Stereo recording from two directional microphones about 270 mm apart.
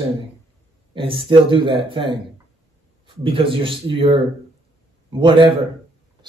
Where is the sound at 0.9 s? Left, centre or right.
Centre.